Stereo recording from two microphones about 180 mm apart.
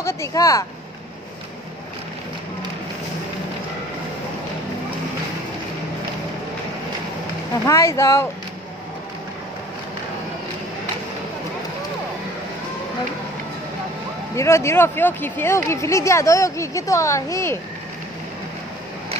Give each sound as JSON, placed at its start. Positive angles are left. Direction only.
{"t": 0.0, "sound": "speech", "side_deg": 15}
{"t": 7.6, "sound": "speech", "side_deg": 15}
{"t": 14.3, "sound": "speech", "side_deg": 15}